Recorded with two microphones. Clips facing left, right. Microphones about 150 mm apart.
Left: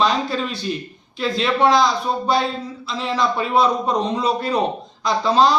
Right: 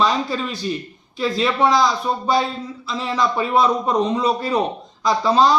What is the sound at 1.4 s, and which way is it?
Speech, centre (ahead or behind).